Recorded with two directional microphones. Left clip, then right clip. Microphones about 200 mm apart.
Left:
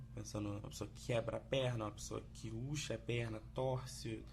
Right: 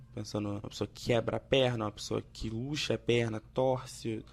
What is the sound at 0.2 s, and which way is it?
Speech, 35° right (ahead or behind).